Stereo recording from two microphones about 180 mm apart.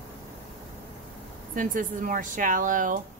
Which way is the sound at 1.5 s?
45° right (ahead or behind).